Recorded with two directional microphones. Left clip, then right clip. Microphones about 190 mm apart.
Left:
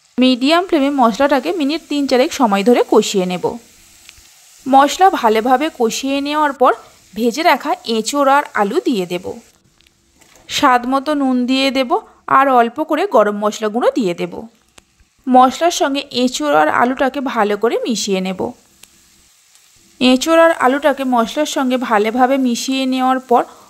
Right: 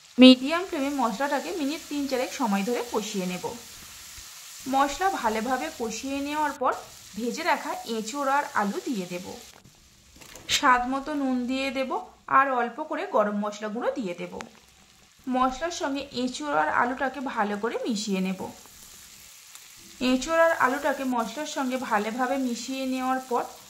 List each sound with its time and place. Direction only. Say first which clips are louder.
0.1 s a sound: left 1 dB; centre (ahead or behind)
0.4 s speech: left 14 dB; 45° left (ahead or behind)
4.6 s speech: left 14 dB; 40° left (ahead or behind)
10.6 s speech: left 10 dB; 45° left (ahead or behind)
20.0 s speech: left 12 dB; 45° left (ahead or behind)